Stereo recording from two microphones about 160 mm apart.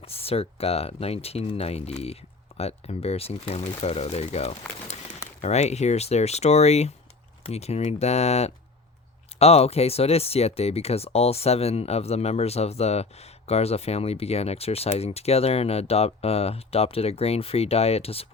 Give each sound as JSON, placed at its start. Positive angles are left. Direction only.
{"t": 0.0, "sound": "speech", "side_deg": 35}